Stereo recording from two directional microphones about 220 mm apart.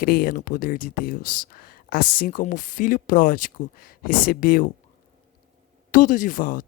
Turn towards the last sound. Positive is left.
turn(degrees=35)  # may be behind; listen again after turning